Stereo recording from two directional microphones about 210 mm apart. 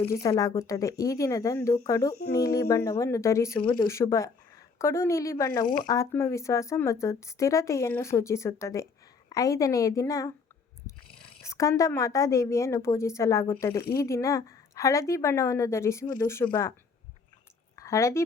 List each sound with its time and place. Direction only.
0.1 s a woman's voice: 15° left (ahead or behind)
11.4 s a woman's voice: 15° left (ahead or behind)
17.7 s a sound: 15° left (ahead or behind)